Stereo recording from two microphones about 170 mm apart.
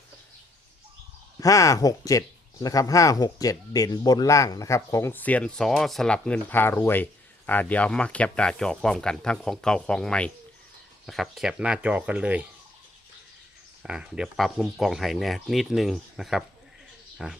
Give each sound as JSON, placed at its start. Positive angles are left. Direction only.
{"t": 1.4, "sound": "speech", "side_deg": 20}
{"t": 13.8, "sound": "speech", "side_deg": -5}